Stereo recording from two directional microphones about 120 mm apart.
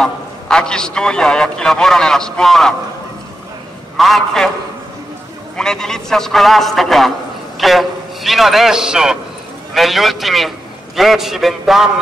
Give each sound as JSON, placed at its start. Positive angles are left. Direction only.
{"t": 0.0, "sound": "a man's voice", "side_deg": 5}
{"t": 3.9, "sound": "a man's voice", "side_deg": 0}
{"t": 5.6, "sound": "a man's voice", "side_deg": 5}